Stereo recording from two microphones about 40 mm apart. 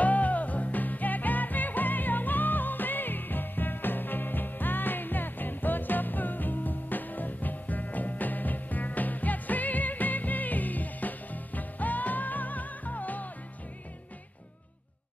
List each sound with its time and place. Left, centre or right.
0.0 s music: left